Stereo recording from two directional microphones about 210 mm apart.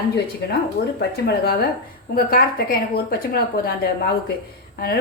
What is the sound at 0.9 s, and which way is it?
A woman's voice, 50° left (ahead or behind).